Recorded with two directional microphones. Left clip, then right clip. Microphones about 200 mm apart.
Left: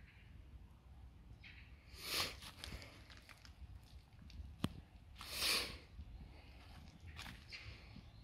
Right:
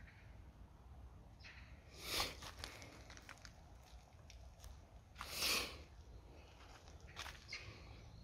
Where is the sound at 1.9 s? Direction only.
Centre (ahead or behind).